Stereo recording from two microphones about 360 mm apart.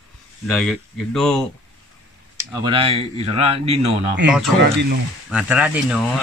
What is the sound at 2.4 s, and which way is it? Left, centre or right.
Speech, centre.